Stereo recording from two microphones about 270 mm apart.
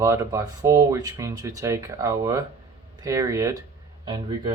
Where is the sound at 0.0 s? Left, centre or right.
Centre.